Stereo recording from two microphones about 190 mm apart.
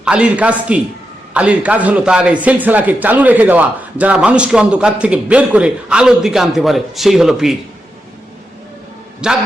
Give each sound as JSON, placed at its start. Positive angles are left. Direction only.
{"t": 0.0, "sound": "speech", "side_deg": -5}
{"t": 9.2, "sound": "a man's voice", "side_deg": -5}